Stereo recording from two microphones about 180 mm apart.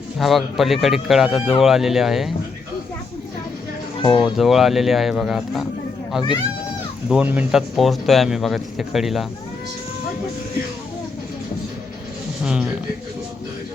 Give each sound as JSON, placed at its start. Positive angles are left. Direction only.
{"t": 0.2, "sound": "speech", "side_deg": 0}
{"t": 4.0, "sound": "speech", "side_deg": 25}
{"t": 4.4, "sound": "speech", "side_deg": 0}
{"t": 7.1, "sound": "speech", "side_deg": -10}
{"t": 12.5, "sound": "speech", "side_deg": -5}